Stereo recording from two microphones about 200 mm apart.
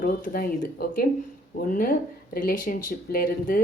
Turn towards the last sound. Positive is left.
turn(degrees=45)  # may be behind; listen again after turning